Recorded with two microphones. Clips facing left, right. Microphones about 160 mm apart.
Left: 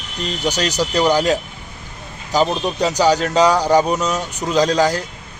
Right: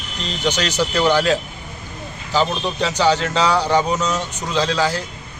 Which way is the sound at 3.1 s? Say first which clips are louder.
Left 1 dB; 40° left (ahead or behind).